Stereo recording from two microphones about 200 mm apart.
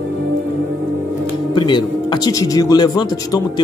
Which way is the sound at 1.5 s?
25° left (ahead or behind).